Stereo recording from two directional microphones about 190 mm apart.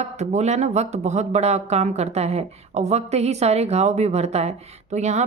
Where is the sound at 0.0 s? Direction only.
35° right (ahead or behind).